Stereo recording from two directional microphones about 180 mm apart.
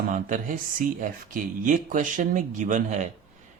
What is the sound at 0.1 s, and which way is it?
Speech, 45° right (ahead or behind).